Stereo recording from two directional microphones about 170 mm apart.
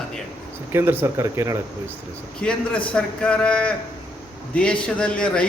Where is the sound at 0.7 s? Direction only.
10° right (ahead or behind).